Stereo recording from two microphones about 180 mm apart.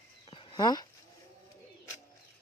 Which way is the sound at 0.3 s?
25° left (ahead or behind).